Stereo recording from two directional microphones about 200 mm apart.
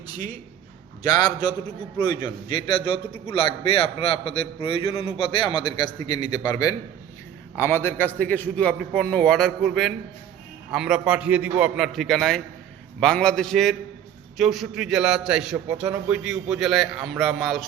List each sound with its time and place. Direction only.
0.1 s a man's voice: 20° left (ahead or behind); by 17.7 s centre (ahead or behind)